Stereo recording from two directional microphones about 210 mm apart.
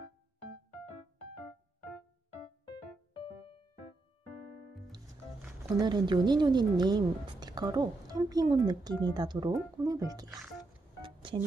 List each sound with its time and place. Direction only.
5.8 s speech: 20° right (ahead or behind)
10.3 s speech: centre (ahead or behind)
11.0 s a sound: 25° right (ahead or behind)